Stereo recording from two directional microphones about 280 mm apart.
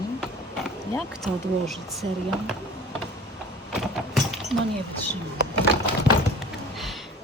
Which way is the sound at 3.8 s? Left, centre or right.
Centre.